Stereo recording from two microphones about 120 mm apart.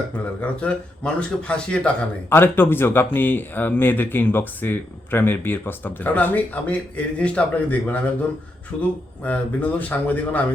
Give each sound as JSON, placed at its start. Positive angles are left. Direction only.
{"t": 0.4, "sound": "speech", "side_deg": 10}